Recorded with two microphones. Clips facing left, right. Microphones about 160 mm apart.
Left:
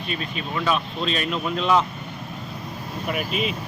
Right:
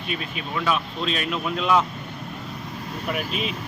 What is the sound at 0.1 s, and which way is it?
Speech, 5° right (ahead or behind).